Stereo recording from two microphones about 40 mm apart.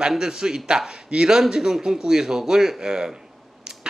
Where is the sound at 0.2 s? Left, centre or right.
Centre.